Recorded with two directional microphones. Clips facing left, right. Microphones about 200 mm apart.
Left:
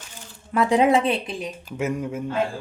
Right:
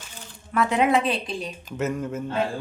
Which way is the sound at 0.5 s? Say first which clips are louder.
Left 3 dB; 30° left (ahead or behind).